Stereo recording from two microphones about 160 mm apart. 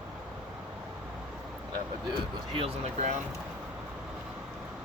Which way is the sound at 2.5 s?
40° right (ahead or behind).